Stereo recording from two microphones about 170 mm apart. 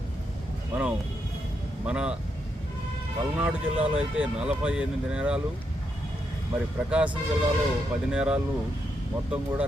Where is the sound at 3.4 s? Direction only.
5° right (ahead or behind).